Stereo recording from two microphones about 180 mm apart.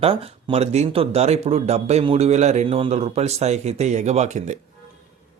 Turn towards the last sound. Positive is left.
turn(degrees=-40)  # may be behind; listen again after turning